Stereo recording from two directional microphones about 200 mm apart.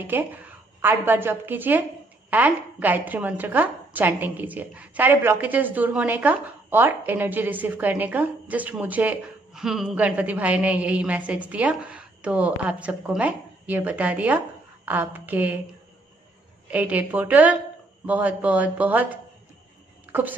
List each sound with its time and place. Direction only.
0.0 s a woman's voice: 10° right (ahead or behind)
16.7 s a woman's voice: 10° right (ahead or behind)
20.1 s a sound: 10° right (ahead or behind)